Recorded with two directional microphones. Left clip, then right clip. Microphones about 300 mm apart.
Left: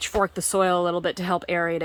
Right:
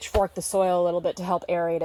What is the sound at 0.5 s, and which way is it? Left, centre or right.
Speech, centre.